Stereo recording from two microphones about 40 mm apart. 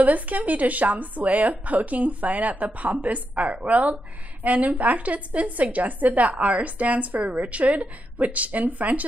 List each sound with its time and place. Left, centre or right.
0.0 s a woman's voice: right